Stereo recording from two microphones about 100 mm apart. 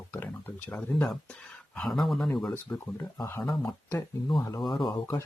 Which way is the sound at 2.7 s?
20° left (ahead or behind).